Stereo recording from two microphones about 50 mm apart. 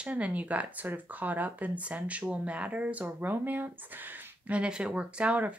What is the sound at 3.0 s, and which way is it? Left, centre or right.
Speech, right.